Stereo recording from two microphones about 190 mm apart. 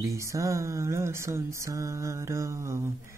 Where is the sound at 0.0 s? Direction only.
15° right (ahead or behind).